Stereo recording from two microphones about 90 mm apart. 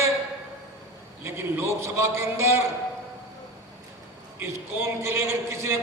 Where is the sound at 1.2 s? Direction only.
30° right (ahead or behind).